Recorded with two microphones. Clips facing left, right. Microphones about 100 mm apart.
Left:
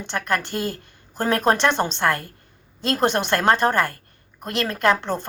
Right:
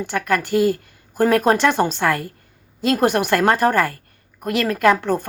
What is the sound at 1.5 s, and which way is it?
A woman's voice, 30° left (ahead or behind).